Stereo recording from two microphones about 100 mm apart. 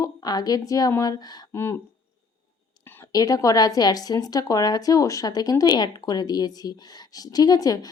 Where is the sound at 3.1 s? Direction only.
35° left (ahead or behind).